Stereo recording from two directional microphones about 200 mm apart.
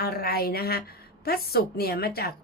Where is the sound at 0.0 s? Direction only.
50° left (ahead or behind).